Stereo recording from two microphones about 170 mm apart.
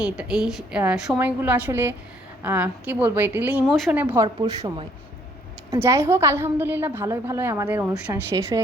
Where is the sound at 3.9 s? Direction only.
10° right (ahead or behind).